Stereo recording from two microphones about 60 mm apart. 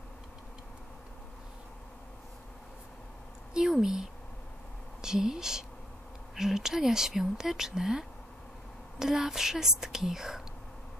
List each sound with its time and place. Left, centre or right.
3.5 s speech: centre